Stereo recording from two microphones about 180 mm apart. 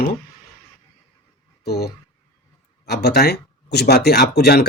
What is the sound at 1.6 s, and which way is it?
Speech, 65° left (ahead or behind).